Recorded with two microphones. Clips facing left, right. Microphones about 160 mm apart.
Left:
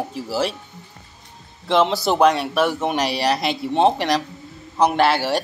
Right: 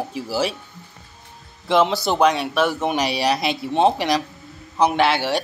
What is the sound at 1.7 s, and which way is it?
Speech, centre (ahead or behind).